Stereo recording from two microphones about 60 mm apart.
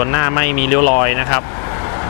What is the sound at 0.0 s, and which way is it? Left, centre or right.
Speech, left.